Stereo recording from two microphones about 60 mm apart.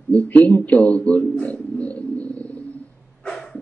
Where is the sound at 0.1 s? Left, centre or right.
Left.